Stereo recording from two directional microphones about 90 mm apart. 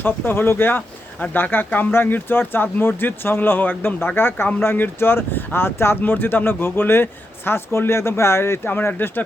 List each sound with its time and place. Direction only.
0.0 s speech: 25° left (ahead or behind)